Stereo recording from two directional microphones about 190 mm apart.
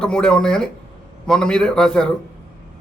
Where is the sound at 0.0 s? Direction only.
5° left (ahead or behind).